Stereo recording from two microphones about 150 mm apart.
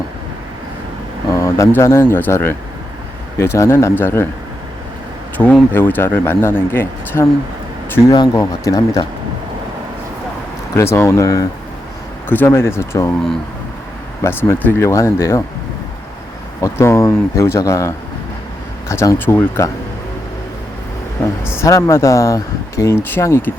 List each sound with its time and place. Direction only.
1.3 s speech: 20° left (ahead or behind)
5.4 s speech: 10° left (ahead or behind)
8.1 s speech: 25° left (ahead or behind)
10.8 s speech: 20° left (ahead or behind)
14.2 s speech: 20° left (ahead or behind)
16.6 s speech: 20° left (ahead or behind)
21.6 s speech: 20° left (ahead or behind)